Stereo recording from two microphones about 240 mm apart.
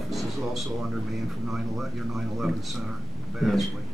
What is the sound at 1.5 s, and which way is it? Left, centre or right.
A man's voice, centre.